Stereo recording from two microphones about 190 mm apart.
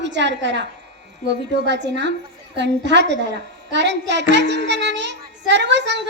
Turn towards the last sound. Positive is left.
turn(degrees=-65)  # may be behind; listen again after turning